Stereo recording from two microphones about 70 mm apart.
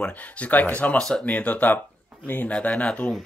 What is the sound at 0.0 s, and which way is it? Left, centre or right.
Speech, left.